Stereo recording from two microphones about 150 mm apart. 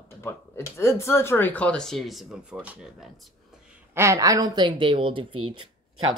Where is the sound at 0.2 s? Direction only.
15° left (ahead or behind); by 3.8 s 5° right (ahead or behind).